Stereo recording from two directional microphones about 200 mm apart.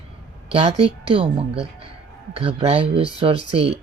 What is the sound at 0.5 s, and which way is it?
Speech, 30° right (ahead or behind).